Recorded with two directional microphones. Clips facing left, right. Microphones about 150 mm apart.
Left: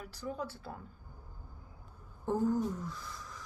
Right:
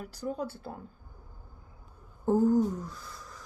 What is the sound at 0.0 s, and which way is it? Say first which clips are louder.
Speech: right 5 dB; 40° right (ahead or behind).